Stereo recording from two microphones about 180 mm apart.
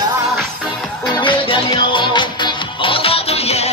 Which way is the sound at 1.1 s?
25° left (ahead or behind).